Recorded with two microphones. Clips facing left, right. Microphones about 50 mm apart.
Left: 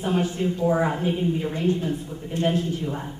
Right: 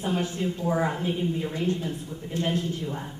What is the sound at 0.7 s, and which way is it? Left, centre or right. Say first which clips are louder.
Speech: left 3 dB; centre.